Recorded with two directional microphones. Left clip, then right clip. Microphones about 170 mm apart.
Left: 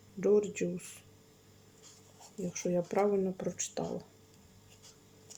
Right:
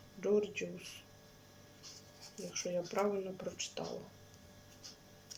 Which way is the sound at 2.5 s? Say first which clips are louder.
Left 5 dB; 35° left (ahead or behind).